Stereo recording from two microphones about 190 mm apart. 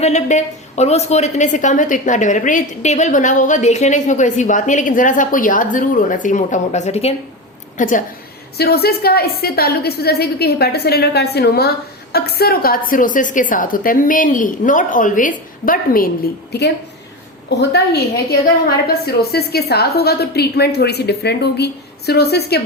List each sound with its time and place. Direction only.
0.0 s a woman's voice: 40° left (ahead or behind)
8.5 s a woman's voice: 55° left (ahead or behind)
16.5 s a woman's voice: 60° left (ahead or behind)